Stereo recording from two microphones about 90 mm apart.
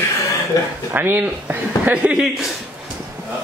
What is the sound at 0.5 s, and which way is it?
Speech, 40° left (ahead or behind).